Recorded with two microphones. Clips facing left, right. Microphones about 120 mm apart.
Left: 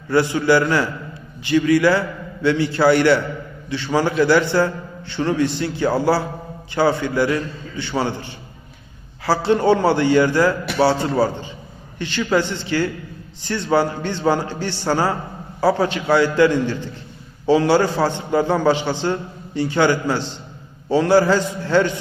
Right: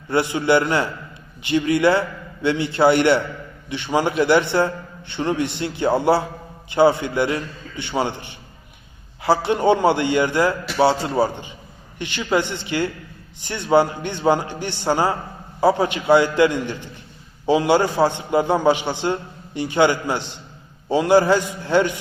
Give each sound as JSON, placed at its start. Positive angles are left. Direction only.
{"t": 0.1, "sound": "a man's voice", "side_deg": -20}
{"t": 9.2, "sound": "a man's voice", "side_deg": -20}